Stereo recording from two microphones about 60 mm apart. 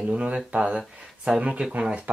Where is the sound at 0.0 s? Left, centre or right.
Right.